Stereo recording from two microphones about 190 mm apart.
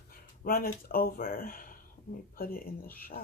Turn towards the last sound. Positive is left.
turn(degrees=50)  # may be behind; listen again after turning